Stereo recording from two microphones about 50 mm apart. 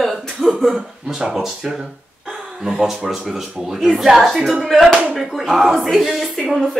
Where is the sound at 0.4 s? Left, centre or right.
Centre.